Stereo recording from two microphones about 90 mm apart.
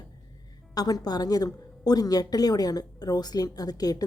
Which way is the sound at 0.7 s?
45° left (ahead or behind).